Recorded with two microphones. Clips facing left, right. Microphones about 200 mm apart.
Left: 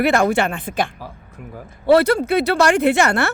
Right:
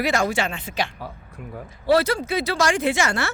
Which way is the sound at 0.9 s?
5° left (ahead or behind).